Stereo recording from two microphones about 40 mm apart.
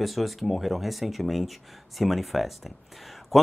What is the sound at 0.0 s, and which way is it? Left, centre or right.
Speech, centre.